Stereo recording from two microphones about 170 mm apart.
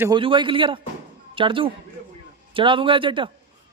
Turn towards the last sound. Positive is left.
turn(degrees=-30)  # may be behind; listen again after turning